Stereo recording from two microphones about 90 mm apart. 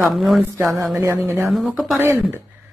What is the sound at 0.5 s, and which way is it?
Speech, 35° right (ahead or behind).